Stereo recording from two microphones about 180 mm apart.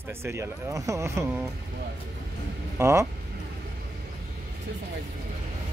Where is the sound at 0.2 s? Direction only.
15° right (ahead or behind).